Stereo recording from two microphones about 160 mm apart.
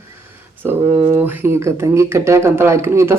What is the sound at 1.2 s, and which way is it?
Speech, 15° right (ahead or behind).